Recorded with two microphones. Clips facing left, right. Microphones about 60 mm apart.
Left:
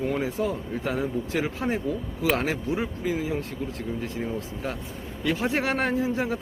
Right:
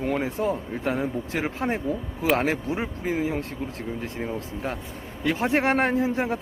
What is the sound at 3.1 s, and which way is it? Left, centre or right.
Speech, right.